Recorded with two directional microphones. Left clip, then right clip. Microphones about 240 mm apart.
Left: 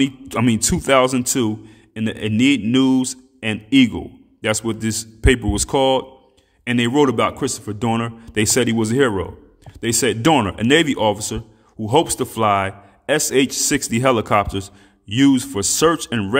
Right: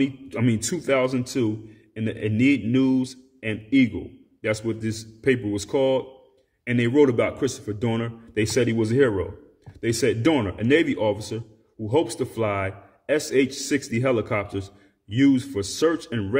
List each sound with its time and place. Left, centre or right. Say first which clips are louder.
0.0 s a man's voice: left 6 dB; left